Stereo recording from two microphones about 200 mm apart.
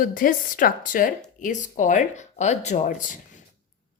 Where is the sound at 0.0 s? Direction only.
45° left (ahead or behind).